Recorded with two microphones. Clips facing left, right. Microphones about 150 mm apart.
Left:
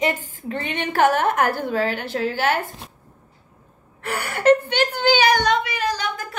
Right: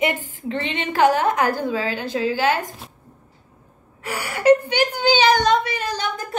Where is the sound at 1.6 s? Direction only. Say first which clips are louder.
Left 1 dB; 55° left (ahead or behind).